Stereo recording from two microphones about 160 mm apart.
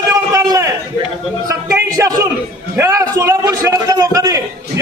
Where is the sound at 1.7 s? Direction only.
20° right (ahead or behind).